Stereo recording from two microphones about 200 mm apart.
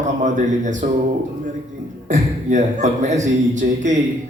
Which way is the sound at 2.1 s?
35° right (ahead or behind).